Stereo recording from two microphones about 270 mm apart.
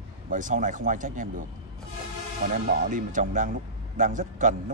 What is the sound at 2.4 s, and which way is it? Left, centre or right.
Speech, right.